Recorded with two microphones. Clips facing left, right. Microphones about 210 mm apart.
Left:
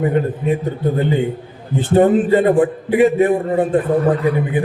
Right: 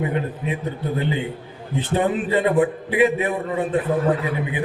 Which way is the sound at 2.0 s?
45° left (ahead or behind).